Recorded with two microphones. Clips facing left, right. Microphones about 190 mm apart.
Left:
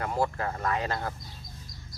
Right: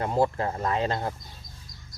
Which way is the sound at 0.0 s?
25° right (ahead or behind).